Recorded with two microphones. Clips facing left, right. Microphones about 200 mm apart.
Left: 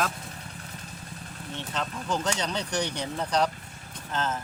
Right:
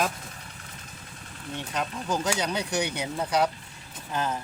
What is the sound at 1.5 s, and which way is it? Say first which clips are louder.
Speech: right 2 dB; 10° right (ahead or behind).